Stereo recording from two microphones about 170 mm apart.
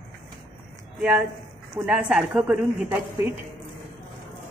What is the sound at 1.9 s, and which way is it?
A woman's voice, 5° right (ahead or behind).